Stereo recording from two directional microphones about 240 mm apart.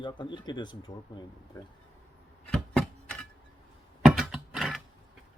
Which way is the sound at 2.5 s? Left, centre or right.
Centre.